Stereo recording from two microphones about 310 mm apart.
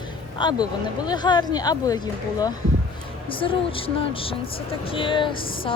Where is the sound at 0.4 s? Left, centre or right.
Centre.